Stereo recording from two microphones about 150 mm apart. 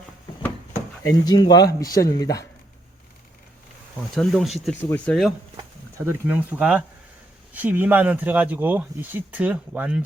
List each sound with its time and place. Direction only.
1.0 s a man's voice: 25° left (ahead or behind)
4.1 s speech: centre (ahead or behind)
4.8 s speech: 10° left (ahead or behind)
6.1 s speech: 10° right (ahead or behind)